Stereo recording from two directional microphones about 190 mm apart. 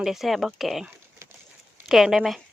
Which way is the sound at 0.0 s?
Centre (ahead or behind).